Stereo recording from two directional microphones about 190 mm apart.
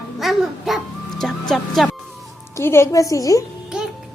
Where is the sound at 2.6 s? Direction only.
15° left (ahead or behind).